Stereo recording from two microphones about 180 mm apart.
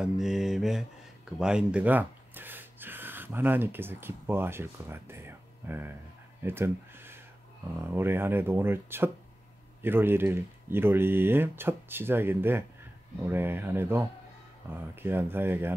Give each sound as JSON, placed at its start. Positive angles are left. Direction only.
{"t": 0.0, "sound": "mantra", "side_deg": 0}
{"t": 1.4, "sound": "speech", "side_deg": -5}